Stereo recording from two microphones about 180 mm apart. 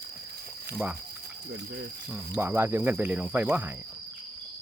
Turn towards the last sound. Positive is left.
turn(degrees=-10)  # may be behind; listen again after turning